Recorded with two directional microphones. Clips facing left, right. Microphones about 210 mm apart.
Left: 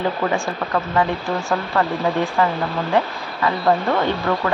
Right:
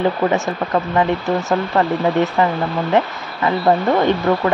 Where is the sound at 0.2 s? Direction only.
15° right (ahead or behind).